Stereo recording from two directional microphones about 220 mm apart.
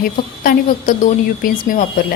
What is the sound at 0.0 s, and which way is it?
A woman's voice, 40° left (ahead or behind).